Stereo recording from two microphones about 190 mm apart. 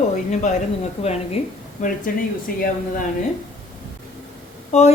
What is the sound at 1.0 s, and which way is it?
Speech, 30° left (ahead or behind).